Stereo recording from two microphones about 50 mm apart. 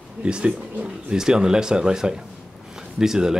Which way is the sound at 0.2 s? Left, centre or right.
Right.